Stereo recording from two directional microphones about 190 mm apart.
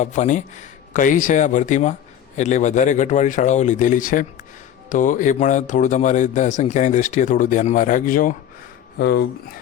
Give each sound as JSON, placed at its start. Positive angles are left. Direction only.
{"t": 0.0, "sound": "speech", "side_deg": 40}
{"t": 9.0, "sound": "speech", "side_deg": 60}